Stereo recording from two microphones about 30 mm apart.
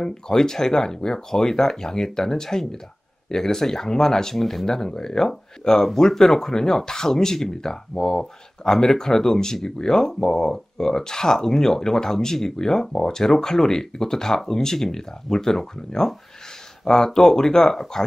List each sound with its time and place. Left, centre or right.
0.0 s speech: centre